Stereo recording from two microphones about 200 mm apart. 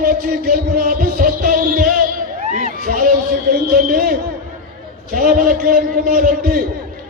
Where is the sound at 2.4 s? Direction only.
40° right (ahead or behind).